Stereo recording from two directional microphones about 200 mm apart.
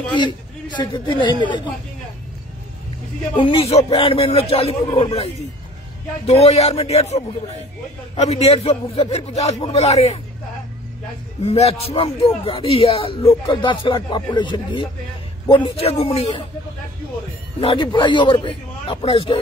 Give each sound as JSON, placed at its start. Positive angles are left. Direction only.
{"t": 0.7, "sound": "a man's voice", "side_deg": 25}
{"t": 3.3, "sound": "a man's voice", "side_deg": 25}
{"t": 8.2, "sound": "a man's voice", "side_deg": 30}
{"t": 11.4, "sound": "a man's voice", "side_deg": 30}
{"t": 17.6, "sound": "a man's voice", "side_deg": 25}